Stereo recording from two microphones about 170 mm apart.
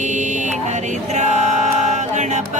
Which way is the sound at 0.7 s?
45° right (ahead or behind).